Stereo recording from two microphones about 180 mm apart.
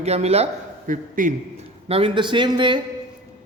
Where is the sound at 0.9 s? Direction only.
45° right (ahead or behind).